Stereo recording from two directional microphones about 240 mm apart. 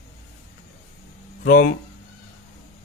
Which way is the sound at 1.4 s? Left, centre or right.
Left.